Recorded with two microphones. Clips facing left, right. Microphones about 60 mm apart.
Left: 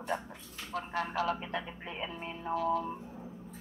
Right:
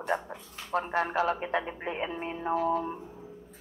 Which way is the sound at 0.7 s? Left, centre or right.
Right.